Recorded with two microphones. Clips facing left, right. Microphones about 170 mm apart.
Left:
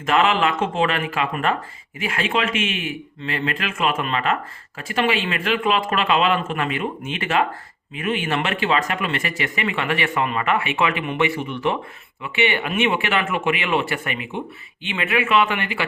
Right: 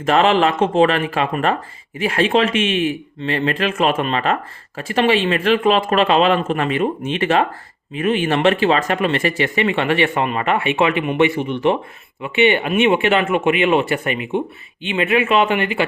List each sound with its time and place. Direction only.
0.0 s speech: 35° right (ahead or behind)